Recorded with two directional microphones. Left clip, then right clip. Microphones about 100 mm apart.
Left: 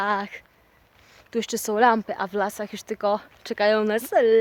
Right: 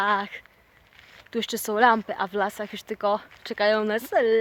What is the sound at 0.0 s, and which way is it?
Speech, 25° left (ahead or behind).